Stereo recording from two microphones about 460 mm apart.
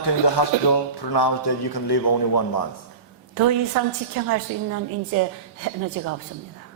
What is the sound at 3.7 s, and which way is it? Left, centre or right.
Speech, right.